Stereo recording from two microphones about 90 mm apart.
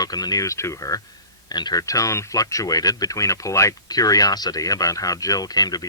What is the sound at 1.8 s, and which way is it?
A man's voice, 40° left (ahead or behind).